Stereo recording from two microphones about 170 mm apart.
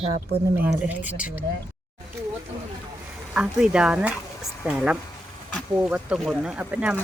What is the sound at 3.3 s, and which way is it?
Speech, 5° right (ahead or behind).